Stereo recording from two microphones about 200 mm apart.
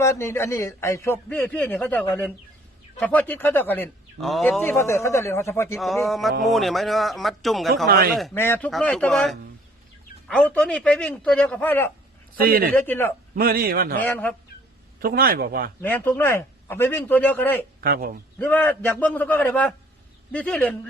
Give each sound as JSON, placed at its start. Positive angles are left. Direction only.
{"t": 0.0, "sound": "speech", "side_deg": 15}
{"t": 4.6, "sound": "speech", "side_deg": 10}
{"t": 6.1, "sound": "a man's voice", "side_deg": 0}
{"t": 7.9, "sound": "a man's voice", "side_deg": -50}
{"t": 8.3, "sound": "a man's voice", "side_deg": 10}
{"t": 12.4, "sound": "a man's voice", "side_deg": -50}
{"t": 12.7, "sound": "speech", "side_deg": 10}
{"t": 13.3, "sound": "a man's voice", "side_deg": -50}
{"t": 14.0, "sound": "speech", "side_deg": 5}
{"t": 14.9, "sound": "a man's voice", "side_deg": -50}
{"t": 15.8, "sound": "speech", "side_deg": 10}
{"t": 17.7, "sound": "a man's voice", "side_deg": -50}
{"t": 18.3, "sound": "speech", "side_deg": 10}